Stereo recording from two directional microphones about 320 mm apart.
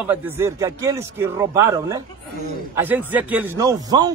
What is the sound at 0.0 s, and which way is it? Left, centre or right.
Speech, centre.